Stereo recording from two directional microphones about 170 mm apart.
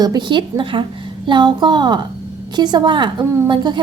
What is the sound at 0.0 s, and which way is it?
A woman's voice, 25° right (ahead or behind).